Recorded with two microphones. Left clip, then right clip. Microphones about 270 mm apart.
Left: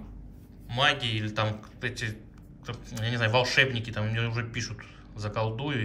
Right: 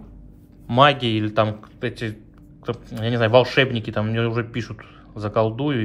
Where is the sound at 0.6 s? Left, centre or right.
Centre.